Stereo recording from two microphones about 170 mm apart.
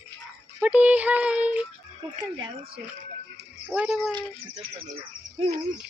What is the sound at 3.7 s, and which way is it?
Speech, 5° right (ahead or behind).